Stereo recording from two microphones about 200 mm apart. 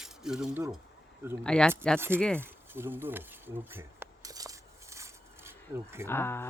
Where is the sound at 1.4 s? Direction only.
5° left (ahead or behind).